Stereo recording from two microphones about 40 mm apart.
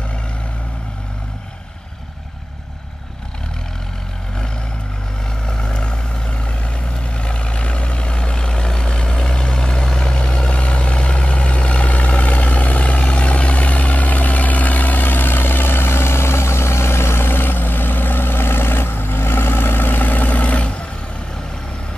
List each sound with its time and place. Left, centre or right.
5.5 s vehicle: centre